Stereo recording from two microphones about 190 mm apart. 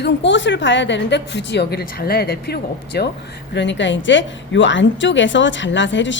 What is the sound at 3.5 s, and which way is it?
A woman's voice, 70° left (ahead or behind).